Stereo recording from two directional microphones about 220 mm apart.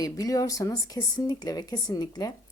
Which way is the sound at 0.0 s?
15° left (ahead or behind).